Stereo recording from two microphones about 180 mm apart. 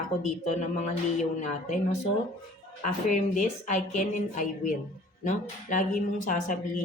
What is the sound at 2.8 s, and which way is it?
A woman's voice, 40° left (ahead or behind).